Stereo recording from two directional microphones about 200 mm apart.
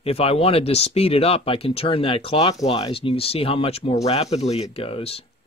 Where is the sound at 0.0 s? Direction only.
30° left (ahead or behind).